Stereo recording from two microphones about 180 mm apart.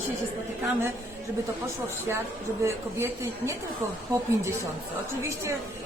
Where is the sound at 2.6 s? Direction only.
15° right (ahead or behind).